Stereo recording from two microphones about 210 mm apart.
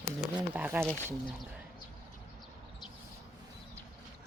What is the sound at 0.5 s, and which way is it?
Speech, 10° right (ahead or behind).